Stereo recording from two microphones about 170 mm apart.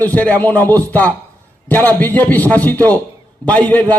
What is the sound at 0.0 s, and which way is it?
Speech, 10° left (ahead or behind).